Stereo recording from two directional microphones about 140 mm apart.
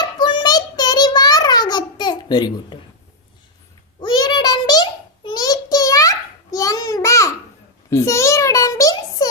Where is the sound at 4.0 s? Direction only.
30° left (ahead or behind).